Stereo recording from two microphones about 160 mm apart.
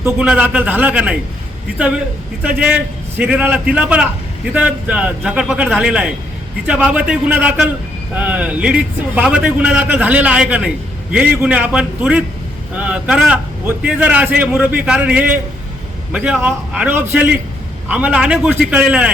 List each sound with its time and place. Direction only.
0.0 s a man's voice: 5° right (ahead or behind)
2.4 s a man's voice: 10° right (ahead or behind)